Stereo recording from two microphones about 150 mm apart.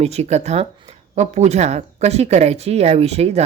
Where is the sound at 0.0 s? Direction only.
45° right (ahead or behind).